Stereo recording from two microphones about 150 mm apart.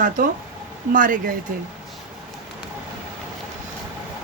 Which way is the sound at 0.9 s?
65° right (ahead or behind).